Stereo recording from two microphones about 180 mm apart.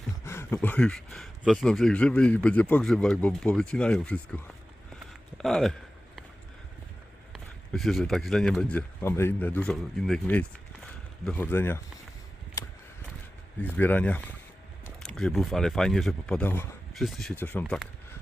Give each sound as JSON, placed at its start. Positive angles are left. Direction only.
{"t": 0.3, "sound": "speech", "side_deg": 15}
{"t": 5.4, "sound": "speech", "side_deg": 0}
{"t": 7.3, "sound": "speech", "side_deg": 0}
{"t": 12.6, "sound": "a sound", "side_deg": 15}
{"t": 13.6, "sound": "speech", "side_deg": 10}